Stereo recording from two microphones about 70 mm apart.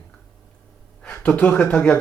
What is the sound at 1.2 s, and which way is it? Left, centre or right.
Speech, centre.